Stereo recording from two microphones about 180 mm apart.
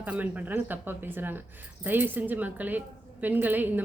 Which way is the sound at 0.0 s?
10° right (ahead or behind).